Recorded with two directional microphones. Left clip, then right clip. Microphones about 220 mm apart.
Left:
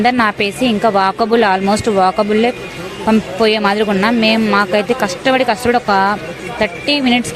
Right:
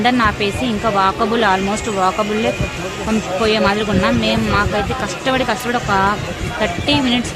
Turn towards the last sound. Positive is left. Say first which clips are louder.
# left 2 dB
turn(degrees=25)  # may be behind; listen again after turning